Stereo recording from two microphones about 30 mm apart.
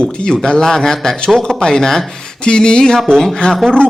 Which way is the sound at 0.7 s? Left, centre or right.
Centre.